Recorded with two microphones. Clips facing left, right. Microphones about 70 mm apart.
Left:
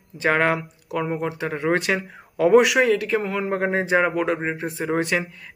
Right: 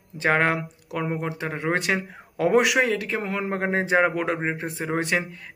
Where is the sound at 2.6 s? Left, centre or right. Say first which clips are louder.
Left 3 dB; right.